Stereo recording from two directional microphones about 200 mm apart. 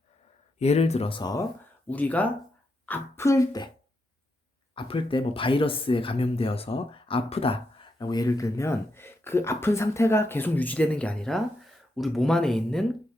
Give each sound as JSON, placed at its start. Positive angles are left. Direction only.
{"t": 0.6, "sound": "speech", "side_deg": 30}
{"t": 1.9, "sound": "speech", "side_deg": 5}
{"t": 4.7, "sound": "speech", "side_deg": 25}